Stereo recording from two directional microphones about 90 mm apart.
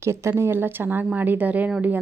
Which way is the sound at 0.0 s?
30° right (ahead or behind).